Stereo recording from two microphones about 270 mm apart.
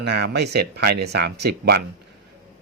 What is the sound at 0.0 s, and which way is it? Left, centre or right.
Speech, right.